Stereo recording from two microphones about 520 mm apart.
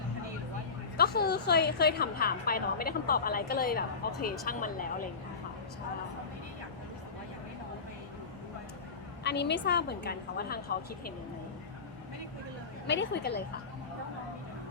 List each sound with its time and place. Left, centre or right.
0.9 s a woman's voice: centre
9.2 s a woman's voice: centre
12.9 s a woman's voice: centre